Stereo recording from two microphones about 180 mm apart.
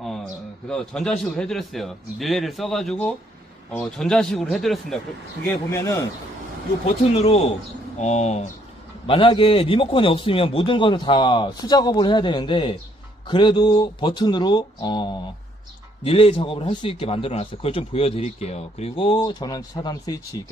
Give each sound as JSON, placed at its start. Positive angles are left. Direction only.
{"t": 0.7, "sound": "a man's voice", "side_deg": 5}
{"t": 5.7, "sound": "a man's voice", "side_deg": 15}
{"t": 7.2, "sound": "a man's voice", "side_deg": 35}